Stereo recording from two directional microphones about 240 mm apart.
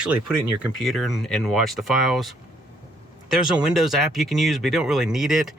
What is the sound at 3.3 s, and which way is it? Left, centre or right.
Speech, centre.